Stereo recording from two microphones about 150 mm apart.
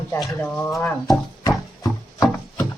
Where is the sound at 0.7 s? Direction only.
Centre (ahead or behind).